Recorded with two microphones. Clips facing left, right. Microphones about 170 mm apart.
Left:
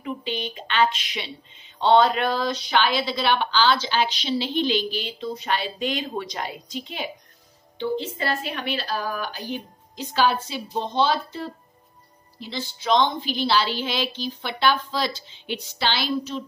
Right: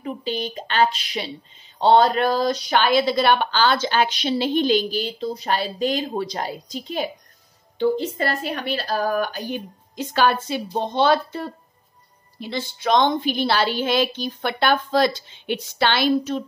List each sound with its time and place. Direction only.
0.0 s a woman's voice: 40° right (ahead or behind)